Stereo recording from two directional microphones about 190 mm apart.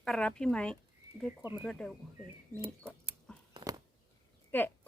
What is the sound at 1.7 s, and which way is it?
Speech, 5° left (ahead or behind).